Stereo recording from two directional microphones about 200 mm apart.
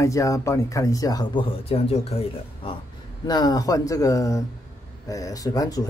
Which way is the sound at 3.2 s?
20° left (ahead or behind).